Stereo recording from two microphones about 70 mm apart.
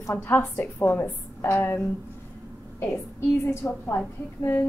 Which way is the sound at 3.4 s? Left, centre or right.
Left.